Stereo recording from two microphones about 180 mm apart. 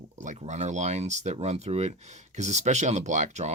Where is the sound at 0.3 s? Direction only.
40° right (ahead or behind).